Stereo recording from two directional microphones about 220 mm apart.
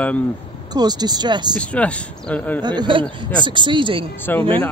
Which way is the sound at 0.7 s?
20° right (ahead or behind).